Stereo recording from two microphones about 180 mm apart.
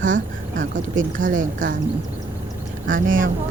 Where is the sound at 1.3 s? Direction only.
90° right.